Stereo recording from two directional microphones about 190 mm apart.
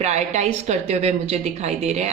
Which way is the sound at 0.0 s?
35° right (ahead or behind).